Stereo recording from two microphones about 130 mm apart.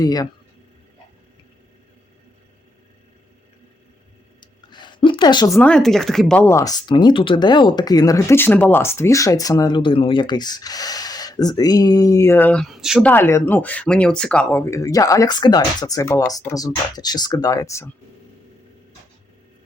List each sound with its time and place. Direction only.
0.0 s speech: 30° left (ahead or behind)
4.4 s a sound: 35° left (ahead or behind)
5.6 s speech: 5° left (ahead or behind)
6.4 s speech: 20° left (ahead or behind)
12.6 s speech: centre (ahead or behind)
13.0 s speech: 15° left (ahead or behind)
14.6 s speech: 25° left (ahead or behind)